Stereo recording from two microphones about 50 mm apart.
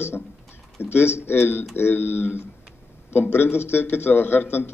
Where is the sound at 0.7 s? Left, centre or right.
Left.